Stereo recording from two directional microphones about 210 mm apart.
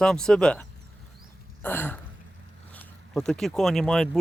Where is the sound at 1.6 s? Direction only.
10° left (ahead or behind).